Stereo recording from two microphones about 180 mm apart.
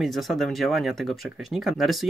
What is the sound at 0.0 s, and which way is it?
Speech, centre (ahead or behind).